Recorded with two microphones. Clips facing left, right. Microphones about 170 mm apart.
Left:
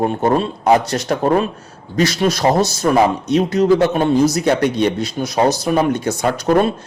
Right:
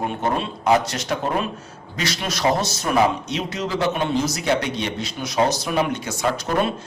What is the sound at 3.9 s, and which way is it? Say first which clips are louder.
A man's voice: left 8 dB; 40° left (ahead or behind).